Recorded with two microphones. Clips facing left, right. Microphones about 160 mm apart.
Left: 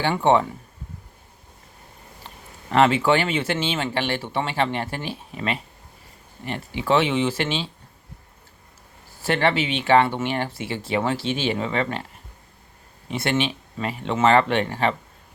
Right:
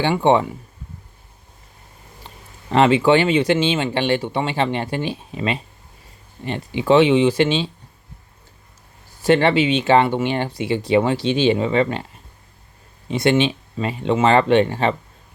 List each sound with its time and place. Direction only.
0.0 s speech: 20° right (ahead or behind)
2.7 s speech: 20° right (ahead or behind)
9.2 s speech: 20° right (ahead or behind)
13.1 s speech: 20° right (ahead or behind)